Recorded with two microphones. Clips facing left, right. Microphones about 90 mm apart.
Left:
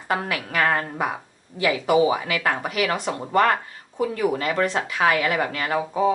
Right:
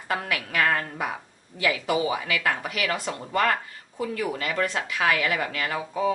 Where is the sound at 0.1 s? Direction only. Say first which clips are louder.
Left 3 dB; 30° left (ahead or behind).